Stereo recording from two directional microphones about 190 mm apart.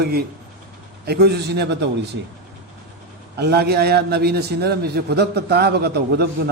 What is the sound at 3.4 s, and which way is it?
A man's voice, 60° right (ahead or behind).